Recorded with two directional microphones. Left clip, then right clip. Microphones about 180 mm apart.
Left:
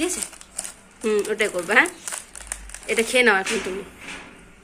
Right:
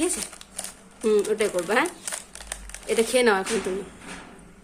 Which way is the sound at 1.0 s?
10° right (ahead or behind).